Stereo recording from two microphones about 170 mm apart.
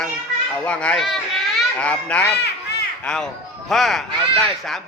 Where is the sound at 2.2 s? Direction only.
80° left.